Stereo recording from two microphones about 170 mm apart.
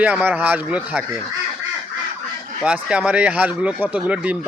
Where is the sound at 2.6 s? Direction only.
5° right (ahead or behind).